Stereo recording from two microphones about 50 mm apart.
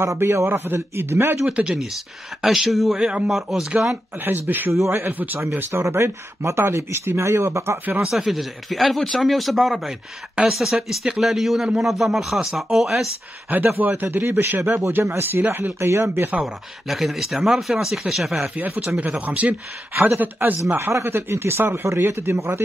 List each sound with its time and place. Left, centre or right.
0.0 s a man's voice: right
0.9 s speech: right
1.4 s a man's voice: centre
2.4 s speech: centre
3.0 s a man's voice: centre
3.3 s a man's voice: centre
4.2 s speech: right
4.8 s speech: right
8.1 s speech: centre
10.3 s a man's voice: centre
13.7 s speech: right
16.3 s speech: centre
18.6 s speech: right
21.0 s speech: right